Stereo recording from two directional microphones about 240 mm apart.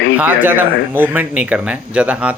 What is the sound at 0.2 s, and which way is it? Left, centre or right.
Speech, centre.